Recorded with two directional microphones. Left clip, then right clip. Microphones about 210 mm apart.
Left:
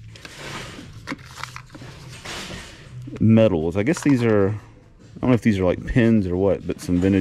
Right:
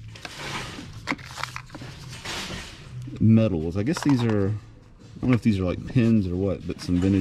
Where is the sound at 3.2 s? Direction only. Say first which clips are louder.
Left 6 dB; 15° right (ahead or behind).